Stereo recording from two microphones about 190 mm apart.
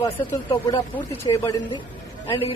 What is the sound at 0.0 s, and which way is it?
Speech, 25° left (ahead or behind).